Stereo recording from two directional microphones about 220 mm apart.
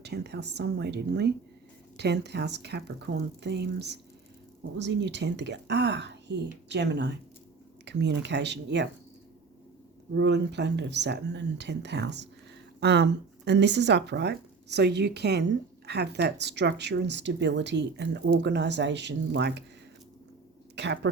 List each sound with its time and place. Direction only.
0.0 s speech: 50° right (ahead or behind)
10.2 s speech: 50° right (ahead or behind)
20.7 s a woman's voice: 50° right (ahead or behind)